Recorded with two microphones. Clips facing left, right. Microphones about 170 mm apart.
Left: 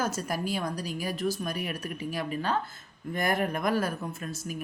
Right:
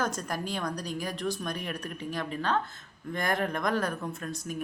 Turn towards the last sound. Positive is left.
turn(degrees=5)  # may be behind; listen again after turning